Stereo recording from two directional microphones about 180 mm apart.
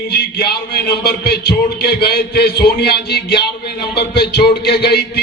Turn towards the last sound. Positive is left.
turn(degrees=65)  # may be behind; listen again after turning